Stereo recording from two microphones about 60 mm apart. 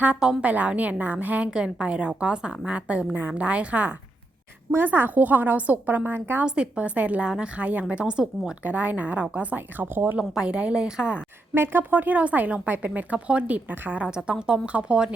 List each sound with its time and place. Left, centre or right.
0.2 s a woman's voice: centre
1.5 s a woman's voice: centre; by 6.4 s right
6.4 s speech: centre
8.6 s a woman's voice: right
10.2 s a woman's voice: centre
11.5 s speech: right
14.1 s a woman's voice: centre